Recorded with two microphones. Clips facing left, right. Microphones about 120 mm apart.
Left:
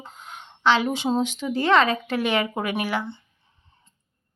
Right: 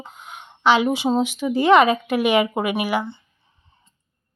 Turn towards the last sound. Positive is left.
turn(degrees=-10)  # may be behind; listen again after turning